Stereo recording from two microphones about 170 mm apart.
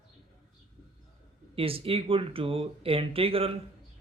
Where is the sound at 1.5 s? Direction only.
35° right (ahead or behind).